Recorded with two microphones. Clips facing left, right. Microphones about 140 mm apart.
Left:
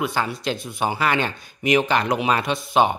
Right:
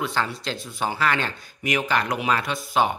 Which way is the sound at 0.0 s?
15° left (ahead or behind).